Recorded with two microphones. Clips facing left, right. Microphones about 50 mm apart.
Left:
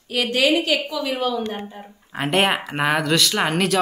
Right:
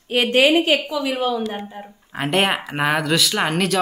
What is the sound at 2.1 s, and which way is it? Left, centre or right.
Speech, centre.